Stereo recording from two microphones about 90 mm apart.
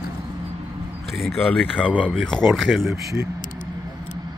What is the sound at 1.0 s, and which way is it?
Speech, 5° left (ahead or behind).